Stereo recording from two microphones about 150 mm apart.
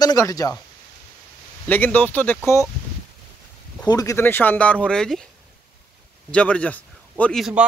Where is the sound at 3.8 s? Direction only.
25° left (ahead or behind); by 5.2 s 5° left (ahead or behind).